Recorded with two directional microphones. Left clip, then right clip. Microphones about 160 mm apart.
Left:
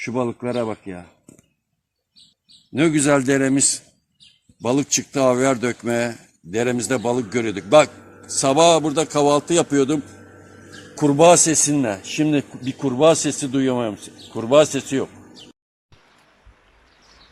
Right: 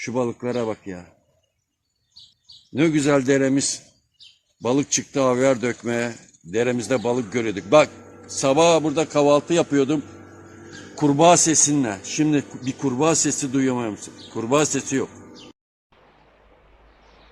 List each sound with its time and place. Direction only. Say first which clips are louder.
0.0 s speech: left 1 dB; 70° left (ahead or behind)
2.7 s a man's voice: left 2 dB; 90° left
4.6 s a man's voice: left 1 dB; 75° left (ahead or behind)
10.9 s a man's voice: left 2 dB; 70° left (ahead or behind); by 15.0 s 50° left (ahead or behind)